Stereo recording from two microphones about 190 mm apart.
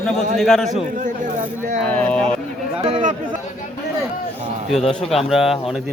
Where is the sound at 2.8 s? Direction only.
35° right (ahead or behind).